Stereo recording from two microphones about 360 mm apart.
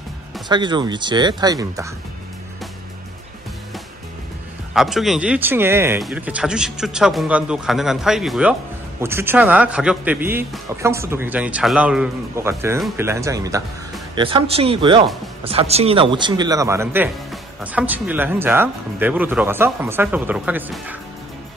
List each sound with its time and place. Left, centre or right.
0.5 s speech: centre
4.7 s speech: centre